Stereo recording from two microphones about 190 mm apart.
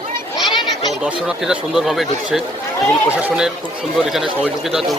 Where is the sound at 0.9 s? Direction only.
Centre (ahead or behind).